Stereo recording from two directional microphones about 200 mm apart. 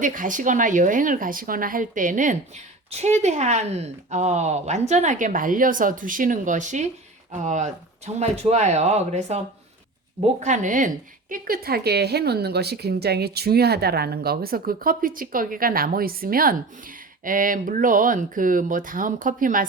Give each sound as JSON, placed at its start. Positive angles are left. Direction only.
{"t": 0.0, "sound": "speech", "side_deg": -40}
{"t": 10.4, "sound": "a woman's voice", "side_deg": -40}